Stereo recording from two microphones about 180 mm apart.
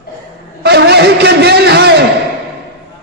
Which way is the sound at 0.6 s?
65° right (ahead or behind).